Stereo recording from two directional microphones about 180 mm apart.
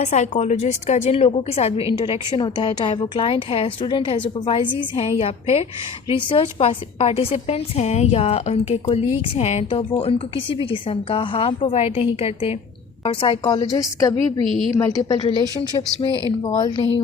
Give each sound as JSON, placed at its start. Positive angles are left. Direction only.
{"t": 0.0, "sound": "a woman's voice", "side_deg": 40}
{"t": 16.6, "sound": "a woman's voice", "side_deg": 25}